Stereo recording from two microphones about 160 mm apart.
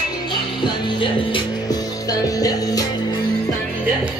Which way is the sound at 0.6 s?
30° left (ahead or behind).